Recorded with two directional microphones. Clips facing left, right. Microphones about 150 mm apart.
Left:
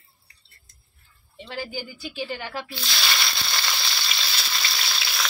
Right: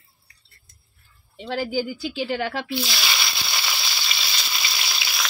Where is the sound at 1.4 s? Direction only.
90° right.